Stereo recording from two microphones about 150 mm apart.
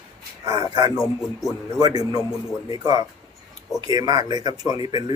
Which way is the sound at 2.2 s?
15° left (ahead or behind).